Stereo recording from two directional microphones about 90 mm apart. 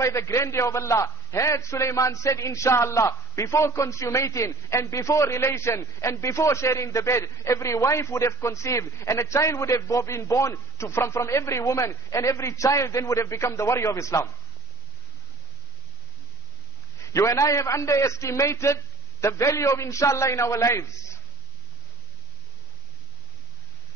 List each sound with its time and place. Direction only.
0.0 s a man's voice: 35° left (ahead or behind)
17.0 s a man's voice: 35° left (ahead or behind)